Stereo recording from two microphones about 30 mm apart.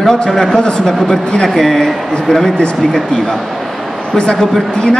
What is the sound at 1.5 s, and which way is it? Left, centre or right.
Speech, centre.